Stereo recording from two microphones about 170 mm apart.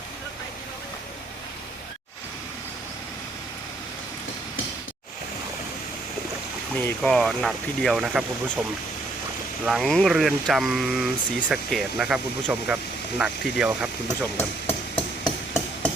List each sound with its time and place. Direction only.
6.7 s speech: 5° left (ahead or behind)
9.6 s speech: centre (ahead or behind)
14.3 s hammer: 35° left (ahead or behind)